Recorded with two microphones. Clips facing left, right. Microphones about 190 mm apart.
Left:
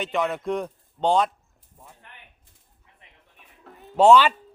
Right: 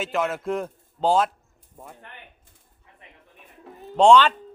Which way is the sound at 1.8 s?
65° right (ahead or behind).